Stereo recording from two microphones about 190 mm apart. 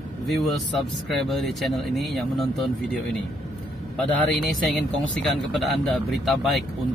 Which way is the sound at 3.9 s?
Centre (ahead or behind).